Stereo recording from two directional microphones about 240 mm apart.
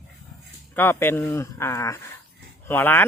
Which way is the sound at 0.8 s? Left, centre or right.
Centre.